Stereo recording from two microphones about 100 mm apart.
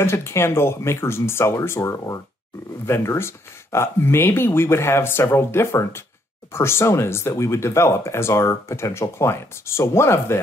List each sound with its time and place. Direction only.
0.0 s speech: 25° left (ahead or behind)